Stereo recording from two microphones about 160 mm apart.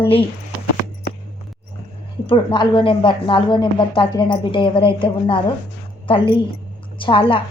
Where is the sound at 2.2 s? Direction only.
30° left (ahead or behind).